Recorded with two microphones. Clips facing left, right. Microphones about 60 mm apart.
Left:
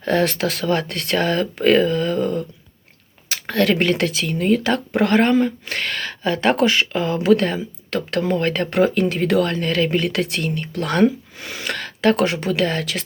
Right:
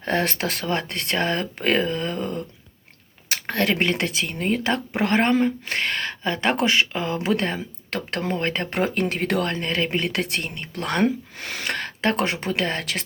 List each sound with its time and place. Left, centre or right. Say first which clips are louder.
0.0 s speech: left 5 dB; right
9.0 s speech: left 5 dB; right
11.6 s speech: left 5 dB; right